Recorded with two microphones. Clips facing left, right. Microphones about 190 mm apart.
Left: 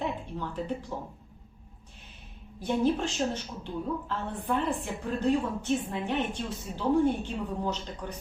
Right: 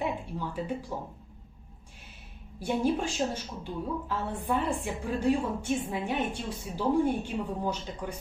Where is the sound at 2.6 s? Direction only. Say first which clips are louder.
Left 1 dB; 10° right (ahead or behind).